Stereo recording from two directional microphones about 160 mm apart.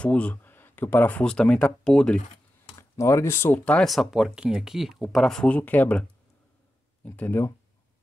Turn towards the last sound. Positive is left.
turn(degrees=10)  # may be behind; listen again after turning